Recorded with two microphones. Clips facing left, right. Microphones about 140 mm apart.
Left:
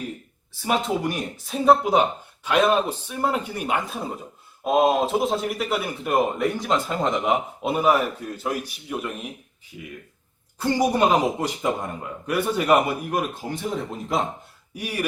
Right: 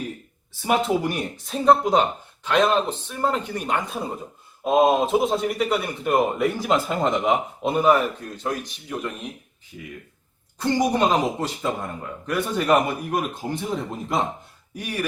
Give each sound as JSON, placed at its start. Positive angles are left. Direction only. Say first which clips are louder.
{"t": 0.6, "sound": "a man's voice", "louder": "right 2 dB", "side_deg": 0}
{"t": 14.8, "sound": "speech", "louder": "even", "side_deg": 10}